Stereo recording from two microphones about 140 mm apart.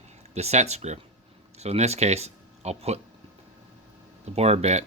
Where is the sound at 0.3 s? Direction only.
50° right (ahead or behind).